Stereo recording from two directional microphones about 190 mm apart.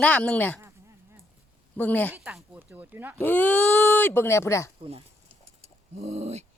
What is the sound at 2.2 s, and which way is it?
Speech, 5° right (ahead or behind).